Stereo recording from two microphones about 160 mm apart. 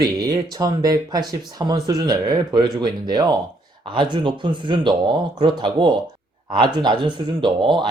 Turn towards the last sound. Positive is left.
turn(degrees=-30)  # may be behind; listen again after turning